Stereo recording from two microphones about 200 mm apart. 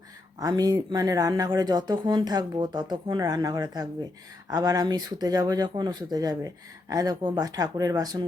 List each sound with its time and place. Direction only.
0.3 s speech: 20° right (ahead or behind)